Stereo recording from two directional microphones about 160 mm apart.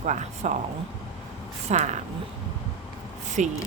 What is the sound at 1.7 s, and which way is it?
Speech, 45° right (ahead or behind).